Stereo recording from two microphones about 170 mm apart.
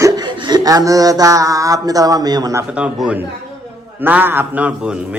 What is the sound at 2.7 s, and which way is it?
Speech, 5° right (ahead or behind).